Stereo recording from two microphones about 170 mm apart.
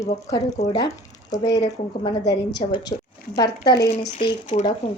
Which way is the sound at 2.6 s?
25° left (ahead or behind).